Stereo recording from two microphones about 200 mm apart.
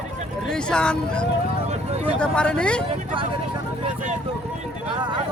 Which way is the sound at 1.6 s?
30° right (ahead or behind).